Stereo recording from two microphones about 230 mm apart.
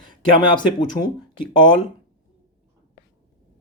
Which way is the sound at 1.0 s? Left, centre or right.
Left.